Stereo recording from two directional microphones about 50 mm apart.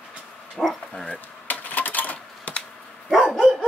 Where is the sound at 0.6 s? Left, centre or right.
Centre.